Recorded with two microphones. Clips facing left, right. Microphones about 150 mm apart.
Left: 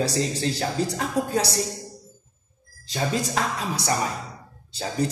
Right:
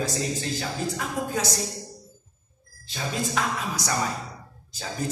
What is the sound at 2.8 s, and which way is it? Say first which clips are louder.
Speech: left 4 dB; 40° left (ahead or behind).